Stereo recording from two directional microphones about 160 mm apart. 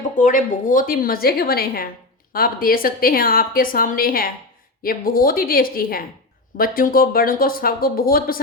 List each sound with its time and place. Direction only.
0.2 s a woman's voice: 55° left (ahead or behind)